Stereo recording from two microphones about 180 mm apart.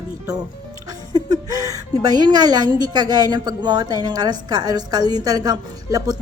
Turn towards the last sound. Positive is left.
turn(degrees=-20)  # may be behind; listen again after turning